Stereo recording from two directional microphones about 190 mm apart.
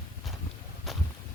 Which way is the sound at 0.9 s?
Centre (ahead or behind).